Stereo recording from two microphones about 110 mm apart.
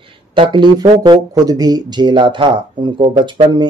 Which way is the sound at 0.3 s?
45° right (ahead or behind).